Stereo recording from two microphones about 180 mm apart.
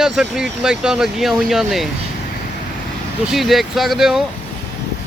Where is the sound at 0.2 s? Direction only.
5° right (ahead or behind).